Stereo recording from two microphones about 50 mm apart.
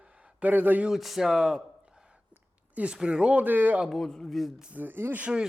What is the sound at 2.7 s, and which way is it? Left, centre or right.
Speech, right.